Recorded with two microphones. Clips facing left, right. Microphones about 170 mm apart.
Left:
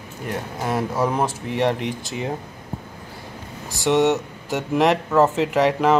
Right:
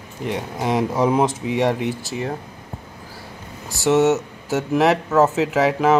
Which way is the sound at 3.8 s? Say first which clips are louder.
Right 2 dB; 5° right (ahead or behind).